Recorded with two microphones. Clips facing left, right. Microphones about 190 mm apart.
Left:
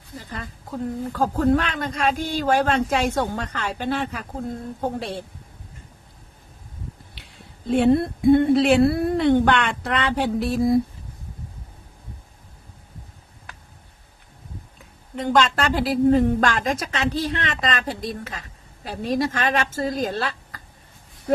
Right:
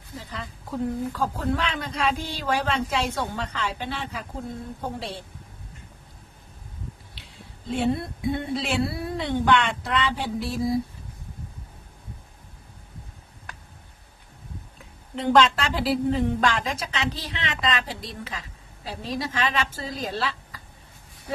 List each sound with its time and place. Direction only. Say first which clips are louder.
1.1 s speech: left 7 dB; 45° left (ahead or behind)
7.7 s a woman's voice: left 8 dB; 55° left (ahead or behind)
15.2 s speech: even; 45° left (ahead or behind)